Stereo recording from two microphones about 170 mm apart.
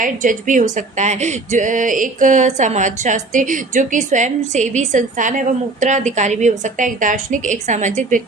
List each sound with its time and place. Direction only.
0.0 s speech: 50° right (ahead or behind)